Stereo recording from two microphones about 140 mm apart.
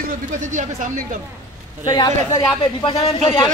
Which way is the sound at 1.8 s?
30° left (ahead or behind).